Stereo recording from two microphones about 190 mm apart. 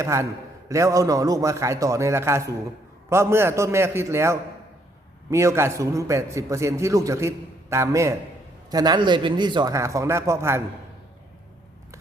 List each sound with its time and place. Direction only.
0.0 s a man's voice: 15° right (ahead or behind)